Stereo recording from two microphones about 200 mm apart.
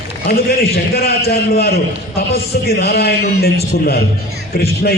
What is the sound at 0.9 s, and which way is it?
A man's voice, 50° left (ahead or behind).